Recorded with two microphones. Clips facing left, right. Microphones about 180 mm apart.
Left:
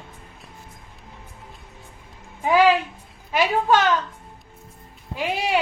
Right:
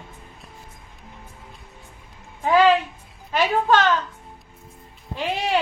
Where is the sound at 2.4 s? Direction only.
10° left (ahead or behind).